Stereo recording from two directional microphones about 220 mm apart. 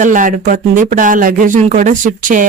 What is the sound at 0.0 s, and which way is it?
A woman's voice, 35° right (ahead or behind).